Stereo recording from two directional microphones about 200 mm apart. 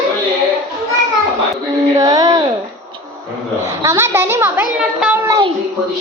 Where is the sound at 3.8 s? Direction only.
15° right (ahead or behind).